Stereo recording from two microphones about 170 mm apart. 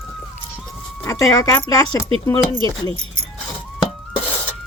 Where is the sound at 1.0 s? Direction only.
20° left (ahead or behind).